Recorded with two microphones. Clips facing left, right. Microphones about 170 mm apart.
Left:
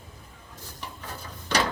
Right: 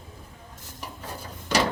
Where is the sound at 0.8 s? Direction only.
10° right (ahead or behind).